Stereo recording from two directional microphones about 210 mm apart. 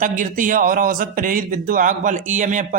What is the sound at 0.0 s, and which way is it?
A man's voice, 40° right (ahead or behind).